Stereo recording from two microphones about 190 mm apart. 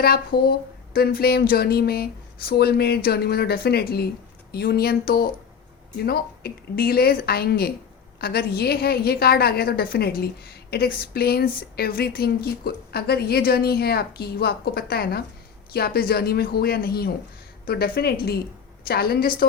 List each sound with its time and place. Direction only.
0.0 s a woman's voice: 55° left (ahead or behind)